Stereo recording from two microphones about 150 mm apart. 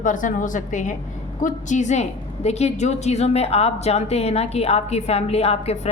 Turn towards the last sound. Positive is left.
turn(degrees=45)  # may be behind; listen again after turning